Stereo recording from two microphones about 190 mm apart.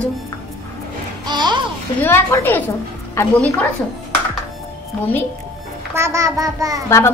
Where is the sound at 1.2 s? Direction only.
25° right (ahead or behind).